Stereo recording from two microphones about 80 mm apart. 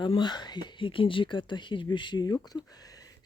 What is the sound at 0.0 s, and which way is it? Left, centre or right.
Speech, left.